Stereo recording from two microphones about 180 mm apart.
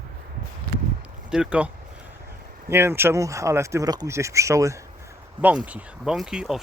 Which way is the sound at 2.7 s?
15° right (ahead or behind).